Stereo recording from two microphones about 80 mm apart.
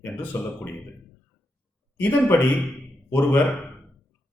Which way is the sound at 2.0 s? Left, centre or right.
Left.